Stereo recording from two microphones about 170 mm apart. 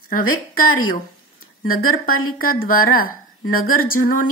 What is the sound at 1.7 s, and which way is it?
A woman's voice, 60° left (ahead or behind).